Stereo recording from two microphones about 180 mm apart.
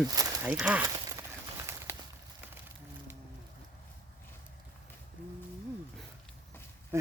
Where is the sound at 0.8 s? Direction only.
20° right (ahead or behind).